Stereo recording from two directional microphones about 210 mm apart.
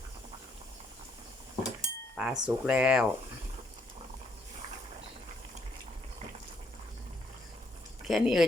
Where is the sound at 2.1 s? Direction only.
5° right (ahead or behind).